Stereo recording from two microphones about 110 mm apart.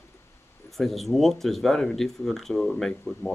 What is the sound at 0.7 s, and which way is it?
Speech, centre (ahead or behind).